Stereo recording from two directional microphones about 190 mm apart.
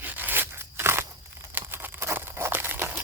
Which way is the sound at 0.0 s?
10° right (ahead or behind).